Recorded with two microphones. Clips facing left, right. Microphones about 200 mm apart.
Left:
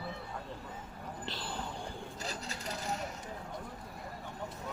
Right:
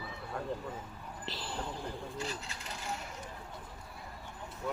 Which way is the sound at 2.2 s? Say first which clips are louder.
Even; 40° left (ahead or behind).